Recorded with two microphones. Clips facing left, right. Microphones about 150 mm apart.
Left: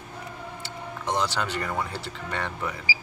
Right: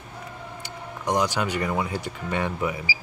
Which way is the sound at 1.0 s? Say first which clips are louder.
Right 3 dB; 15° right (ahead or behind).